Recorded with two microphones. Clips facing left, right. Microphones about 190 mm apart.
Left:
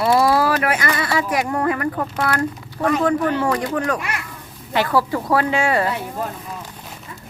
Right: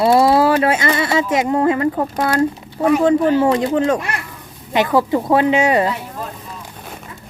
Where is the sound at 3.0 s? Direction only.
25° right (ahead or behind).